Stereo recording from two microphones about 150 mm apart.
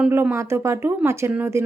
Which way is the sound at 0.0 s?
10° right (ahead or behind).